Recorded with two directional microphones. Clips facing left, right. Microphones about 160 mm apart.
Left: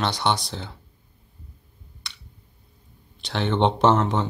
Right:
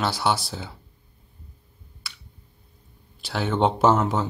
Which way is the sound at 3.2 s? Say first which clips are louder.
Left 1 dB; 5° right (ahead or behind).